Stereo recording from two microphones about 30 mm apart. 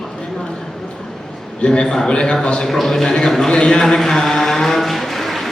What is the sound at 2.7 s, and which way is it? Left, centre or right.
Chant, centre.